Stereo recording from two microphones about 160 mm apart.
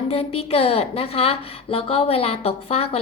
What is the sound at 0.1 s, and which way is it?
Speech, 35° left (ahead or behind).